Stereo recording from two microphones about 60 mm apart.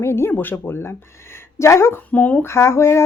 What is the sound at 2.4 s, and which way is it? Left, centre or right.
Speech, left.